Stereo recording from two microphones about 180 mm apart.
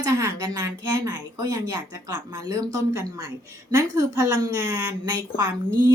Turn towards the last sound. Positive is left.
turn(degrees=-20)  # may be behind; listen again after turning